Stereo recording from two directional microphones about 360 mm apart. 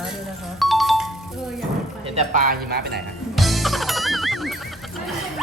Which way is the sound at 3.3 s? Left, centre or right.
Centre.